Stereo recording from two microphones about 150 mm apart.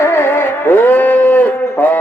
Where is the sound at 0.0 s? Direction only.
15° left (ahead or behind).